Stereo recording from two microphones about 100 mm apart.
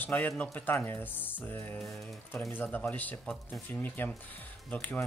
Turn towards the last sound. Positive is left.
turn(degrees=15)  # may be behind; listen again after turning